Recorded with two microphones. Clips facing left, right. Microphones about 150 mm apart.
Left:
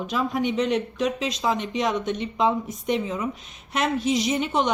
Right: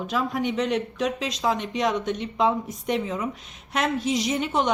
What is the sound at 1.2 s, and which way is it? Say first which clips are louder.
Speech: left 2 dB; 10° right (ahead or behind).